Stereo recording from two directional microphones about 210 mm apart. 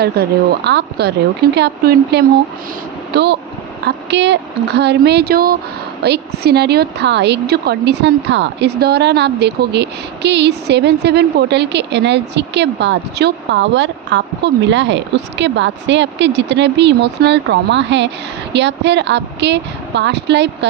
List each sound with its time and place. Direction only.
0.0 s a woman's voice: 50° right (ahead or behind)